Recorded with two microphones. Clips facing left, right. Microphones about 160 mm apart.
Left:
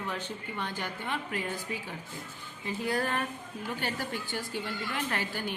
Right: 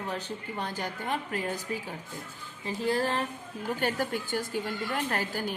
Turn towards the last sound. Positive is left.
turn(degrees=-40)  # may be behind; listen again after turning